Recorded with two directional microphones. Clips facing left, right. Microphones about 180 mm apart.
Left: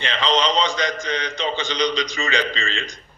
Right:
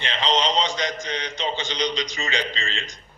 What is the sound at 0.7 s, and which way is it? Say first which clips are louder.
A man's voice: left 3 dB; 65° left (ahead or behind).